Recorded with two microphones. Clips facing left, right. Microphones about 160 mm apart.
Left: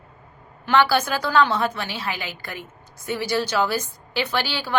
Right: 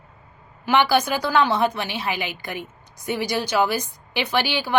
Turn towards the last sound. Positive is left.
turn(degrees=-15)  # may be behind; listen again after turning